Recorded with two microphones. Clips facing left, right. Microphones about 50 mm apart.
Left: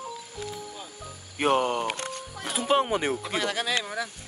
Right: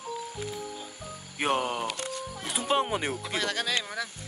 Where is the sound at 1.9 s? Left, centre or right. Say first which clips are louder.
Left 3 dB; left.